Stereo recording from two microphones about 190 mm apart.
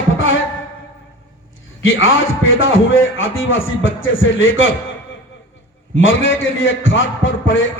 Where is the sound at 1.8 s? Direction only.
90° left.